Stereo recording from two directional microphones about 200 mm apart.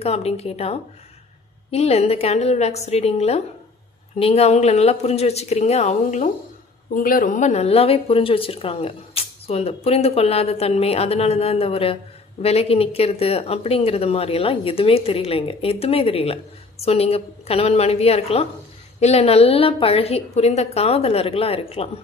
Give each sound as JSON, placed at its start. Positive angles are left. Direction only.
{"t": 0.0, "sound": "a woman's voice", "side_deg": 30}